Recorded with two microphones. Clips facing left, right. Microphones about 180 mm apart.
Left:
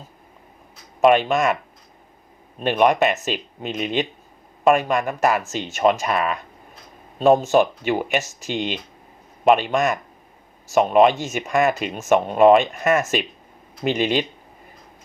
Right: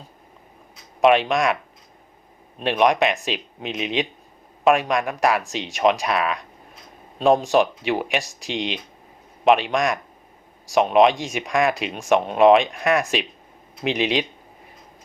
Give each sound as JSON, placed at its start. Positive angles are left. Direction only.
{"t": 1.0, "sound": "speech", "side_deg": 0}
{"t": 2.6, "sound": "speech", "side_deg": 0}